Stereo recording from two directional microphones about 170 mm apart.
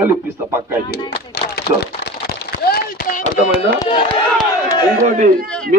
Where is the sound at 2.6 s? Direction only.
60° left (ahead or behind).